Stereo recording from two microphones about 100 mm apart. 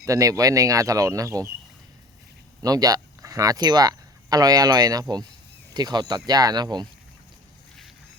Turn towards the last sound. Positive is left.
turn(degrees=-45)  # may be behind; listen again after turning